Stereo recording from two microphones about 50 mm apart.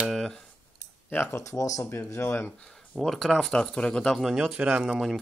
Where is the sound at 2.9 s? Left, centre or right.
Right.